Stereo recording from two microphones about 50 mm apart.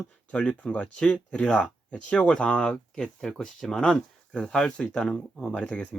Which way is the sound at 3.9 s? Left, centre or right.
Left.